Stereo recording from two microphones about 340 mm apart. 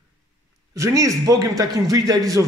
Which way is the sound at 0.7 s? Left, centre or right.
Centre.